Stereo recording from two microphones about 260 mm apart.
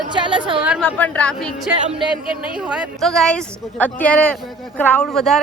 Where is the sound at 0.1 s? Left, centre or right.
Centre.